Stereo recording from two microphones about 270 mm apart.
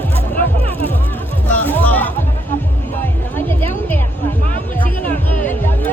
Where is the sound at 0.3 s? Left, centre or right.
Right.